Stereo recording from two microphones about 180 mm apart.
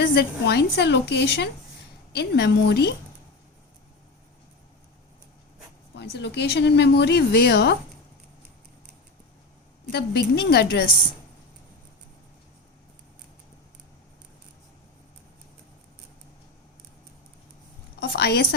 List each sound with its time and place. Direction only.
0.0 s a woman's voice: 65° left (ahead or behind)
5.9 s a woman's voice: 70° left (ahead or behind)
9.9 s a woman's voice: 65° left (ahead or behind)
18.0 s a woman's voice: 65° left (ahead or behind)